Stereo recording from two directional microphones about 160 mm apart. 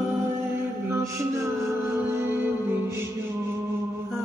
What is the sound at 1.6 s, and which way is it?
Music, 15° right (ahead or behind).